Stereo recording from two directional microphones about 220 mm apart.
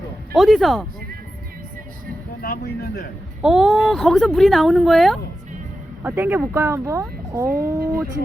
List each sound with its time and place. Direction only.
0.3 s speech: centre (ahead or behind)
2.4 s speech: 40° left (ahead or behind)
3.4 s speech: centre (ahead or behind)
7.5 s speech: 40° right (ahead or behind)